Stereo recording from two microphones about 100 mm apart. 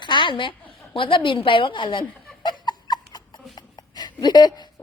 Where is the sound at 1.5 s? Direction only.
60° left (ahead or behind); by 3.4 s 45° left (ahead or behind).